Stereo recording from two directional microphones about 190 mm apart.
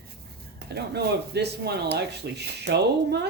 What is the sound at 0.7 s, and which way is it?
Speech, 60° right (ahead or behind).